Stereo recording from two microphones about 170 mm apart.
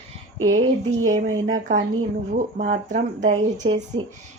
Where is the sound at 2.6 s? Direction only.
50° right (ahead or behind).